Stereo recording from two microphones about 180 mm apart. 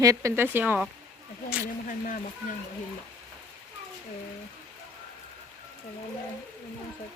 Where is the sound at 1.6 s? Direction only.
45° left (ahead or behind).